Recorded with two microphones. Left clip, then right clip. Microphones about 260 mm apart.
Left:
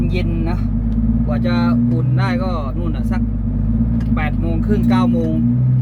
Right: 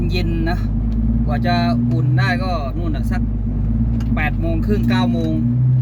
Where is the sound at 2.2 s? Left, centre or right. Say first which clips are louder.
Right 1 dB; centre.